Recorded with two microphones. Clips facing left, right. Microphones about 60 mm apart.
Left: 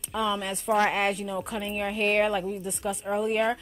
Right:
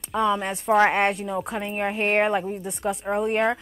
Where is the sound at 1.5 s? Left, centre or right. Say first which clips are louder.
Right 2 dB; right.